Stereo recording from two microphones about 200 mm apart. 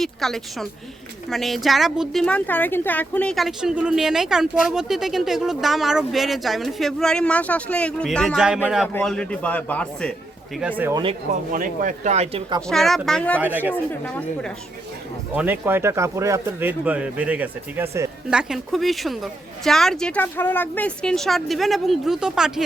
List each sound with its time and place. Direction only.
0.0 s speech: centre (ahead or behind)
10.6 s speech: 10° right (ahead or behind)
11.5 s speech: 40° right (ahead or behind); by 12.6 s 25° right (ahead or behind)
12.6 s speech: centre (ahead or behind)
15.4 s speech: 10° right (ahead or behind)